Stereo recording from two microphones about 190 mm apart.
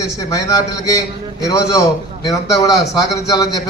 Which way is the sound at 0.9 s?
20° left (ahead or behind).